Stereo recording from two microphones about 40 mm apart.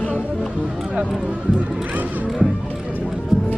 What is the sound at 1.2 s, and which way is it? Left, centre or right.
Speech, right.